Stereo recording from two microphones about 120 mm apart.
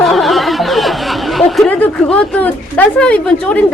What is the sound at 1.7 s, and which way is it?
Speech, 10° left (ahead or behind).